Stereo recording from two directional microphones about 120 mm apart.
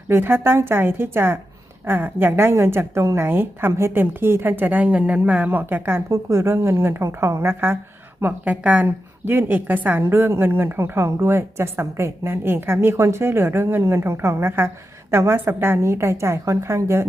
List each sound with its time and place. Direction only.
0.1 s a woman's voice: 20° right (ahead or behind)